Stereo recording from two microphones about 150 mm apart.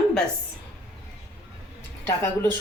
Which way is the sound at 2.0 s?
15° left (ahead or behind).